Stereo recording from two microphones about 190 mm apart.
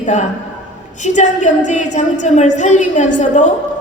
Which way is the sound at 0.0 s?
40° left (ahead or behind).